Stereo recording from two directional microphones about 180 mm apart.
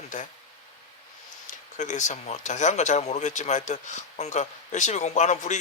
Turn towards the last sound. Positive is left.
turn(degrees=40)  # may be behind; listen again after turning